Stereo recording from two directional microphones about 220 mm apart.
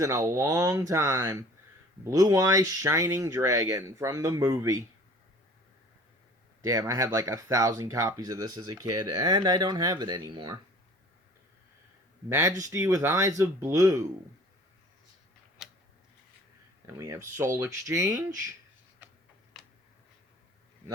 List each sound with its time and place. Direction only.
0.0 s speech: 15° right (ahead or behind)
6.6 s speech: 15° right (ahead or behind)
12.3 s speech: 15° right (ahead or behind)
16.8 s speech: 10° right (ahead or behind)
19.6 s a sound: centre (ahead or behind)